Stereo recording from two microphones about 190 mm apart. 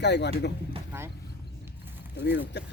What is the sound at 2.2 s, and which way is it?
Speech, 65° left (ahead or behind).